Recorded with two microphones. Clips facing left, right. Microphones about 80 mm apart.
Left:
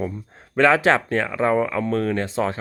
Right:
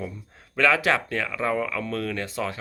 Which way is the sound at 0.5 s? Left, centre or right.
Left.